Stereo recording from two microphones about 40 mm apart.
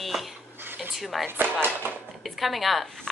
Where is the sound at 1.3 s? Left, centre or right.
Right.